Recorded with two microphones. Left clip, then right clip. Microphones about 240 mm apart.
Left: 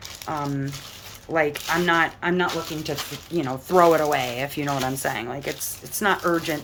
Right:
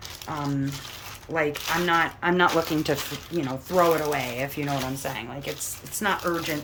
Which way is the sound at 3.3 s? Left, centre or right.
Centre.